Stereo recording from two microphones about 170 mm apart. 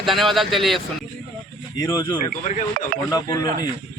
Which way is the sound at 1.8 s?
20° left (ahead or behind).